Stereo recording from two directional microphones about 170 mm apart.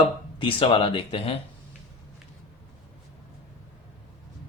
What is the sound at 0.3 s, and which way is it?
Speech, 30° left (ahead or behind).